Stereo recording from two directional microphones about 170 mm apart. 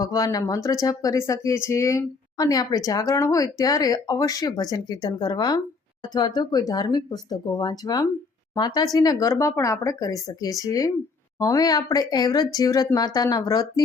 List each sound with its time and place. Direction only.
0.0 s speech: 20° left (ahead or behind)